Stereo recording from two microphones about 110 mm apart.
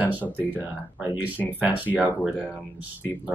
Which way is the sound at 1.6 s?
15° right (ahead or behind).